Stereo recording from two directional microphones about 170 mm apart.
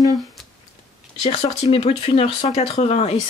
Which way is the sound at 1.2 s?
40° left (ahead or behind).